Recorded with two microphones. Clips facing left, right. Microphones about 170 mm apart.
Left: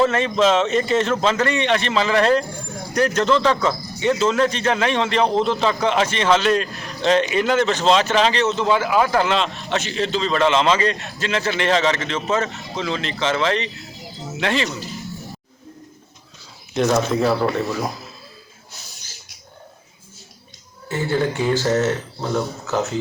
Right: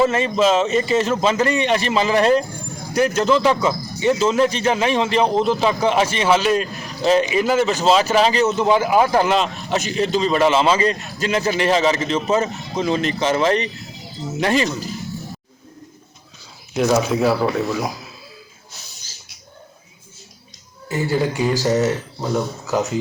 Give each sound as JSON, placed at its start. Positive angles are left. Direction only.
{"t": 0.0, "sound": "speech", "side_deg": -5}
{"t": 13.0, "sound": "speech", "side_deg": -45}
{"t": 13.2, "sound": "speech", "side_deg": -15}
{"t": 14.3, "sound": "speech", "side_deg": -40}
{"t": 16.7, "sound": "speech", "side_deg": -5}
{"t": 20.9, "sound": "speech", "side_deg": -10}